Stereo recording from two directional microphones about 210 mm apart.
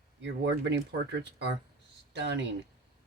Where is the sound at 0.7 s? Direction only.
55° right (ahead or behind).